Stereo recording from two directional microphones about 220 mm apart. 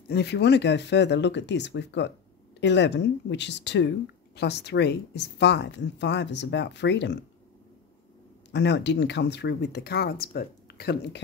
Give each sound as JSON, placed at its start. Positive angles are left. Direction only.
{"t": 0.1, "sound": "speech", "side_deg": 50}
{"t": 8.5, "sound": "speech", "side_deg": 50}